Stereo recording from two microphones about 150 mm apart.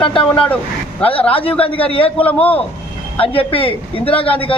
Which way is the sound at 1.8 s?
40° left (ahead or behind).